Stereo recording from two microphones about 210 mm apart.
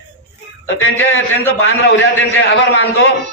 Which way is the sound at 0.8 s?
65° left (ahead or behind).